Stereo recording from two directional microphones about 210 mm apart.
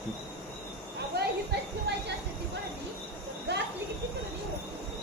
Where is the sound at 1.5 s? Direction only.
50° right (ahead or behind).